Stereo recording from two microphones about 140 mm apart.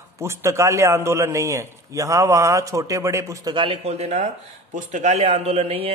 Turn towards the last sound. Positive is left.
turn(degrees=-45)  # may be behind; listen again after turning